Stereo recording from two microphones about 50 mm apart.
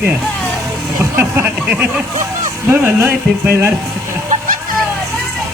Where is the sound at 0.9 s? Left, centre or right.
Right.